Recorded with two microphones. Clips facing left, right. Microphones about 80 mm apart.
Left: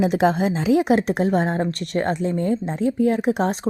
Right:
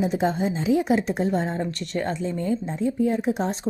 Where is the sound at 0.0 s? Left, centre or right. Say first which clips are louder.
Left 5 dB; left.